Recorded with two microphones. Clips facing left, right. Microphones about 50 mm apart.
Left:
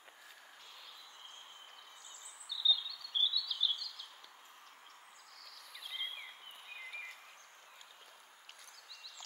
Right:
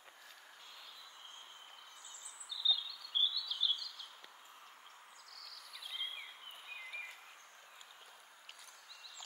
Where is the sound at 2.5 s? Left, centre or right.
Centre.